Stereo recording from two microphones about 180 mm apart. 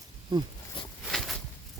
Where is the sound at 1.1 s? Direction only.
Centre (ahead or behind).